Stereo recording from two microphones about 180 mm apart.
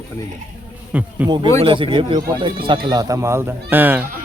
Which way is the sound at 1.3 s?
25° right (ahead or behind).